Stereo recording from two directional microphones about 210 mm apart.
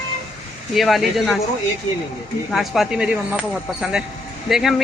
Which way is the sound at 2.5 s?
Centre (ahead or behind).